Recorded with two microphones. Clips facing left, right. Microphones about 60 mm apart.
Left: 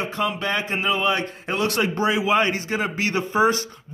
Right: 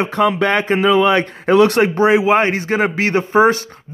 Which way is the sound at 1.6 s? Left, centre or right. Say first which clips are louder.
Right 8 dB; right.